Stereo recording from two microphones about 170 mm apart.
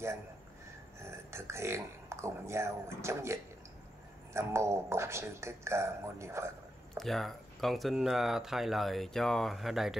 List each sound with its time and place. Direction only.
1.0 s a man's voice: 15° right (ahead or behind)
7.0 s speech: centre (ahead or behind)